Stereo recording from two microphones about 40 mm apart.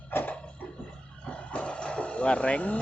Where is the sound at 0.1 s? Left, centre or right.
Left.